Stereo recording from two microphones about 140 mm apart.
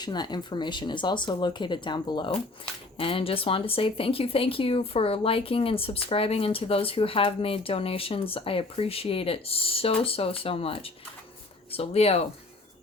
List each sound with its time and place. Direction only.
0.0 s speech: 30° left (ahead or behind); by 12.3 s 45° left (ahead or behind)